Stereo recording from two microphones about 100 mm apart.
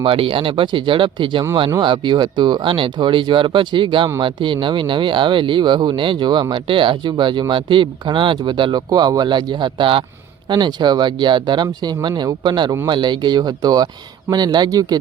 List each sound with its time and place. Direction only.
0.0 s speech: 60° right (ahead or behind)
8.9 s speech: 40° right (ahead or behind)